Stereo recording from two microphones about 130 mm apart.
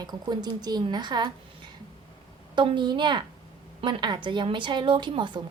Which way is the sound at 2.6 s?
35° right (ahead or behind).